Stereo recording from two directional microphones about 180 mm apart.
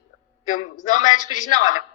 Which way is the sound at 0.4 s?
45° left (ahead or behind).